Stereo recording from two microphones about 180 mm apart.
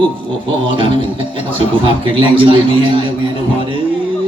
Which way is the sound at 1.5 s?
30° right (ahead or behind).